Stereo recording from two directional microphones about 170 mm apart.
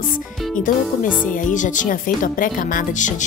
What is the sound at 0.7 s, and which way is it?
Speech, 50° left (ahead or behind).